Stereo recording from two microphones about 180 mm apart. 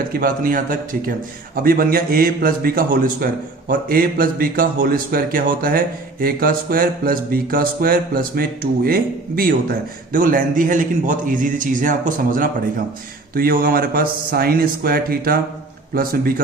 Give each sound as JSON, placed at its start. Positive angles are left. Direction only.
{"t": 0.1, "sound": "a man's voice", "side_deg": -55}